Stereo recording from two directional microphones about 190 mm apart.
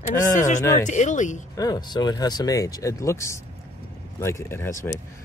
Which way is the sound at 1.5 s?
20° left (ahead or behind).